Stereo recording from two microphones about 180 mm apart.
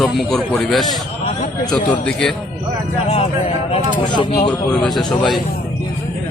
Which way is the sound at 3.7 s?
30° left (ahead or behind).